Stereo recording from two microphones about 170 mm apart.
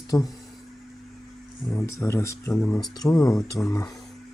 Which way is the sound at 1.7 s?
15° left (ahead or behind).